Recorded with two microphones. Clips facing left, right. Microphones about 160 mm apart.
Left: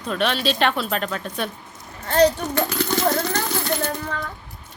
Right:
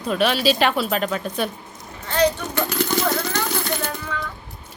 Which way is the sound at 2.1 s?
40° left (ahead or behind).